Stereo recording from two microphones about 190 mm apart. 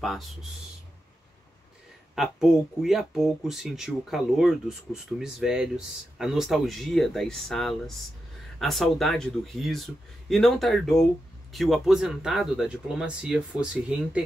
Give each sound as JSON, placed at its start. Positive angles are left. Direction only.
{"t": 0.0, "sound": "speech", "side_deg": 0}
{"t": 2.1, "sound": "speech", "side_deg": 0}